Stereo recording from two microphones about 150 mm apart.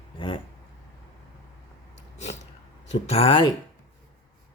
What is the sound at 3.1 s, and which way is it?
Speech, 40° left (ahead or behind).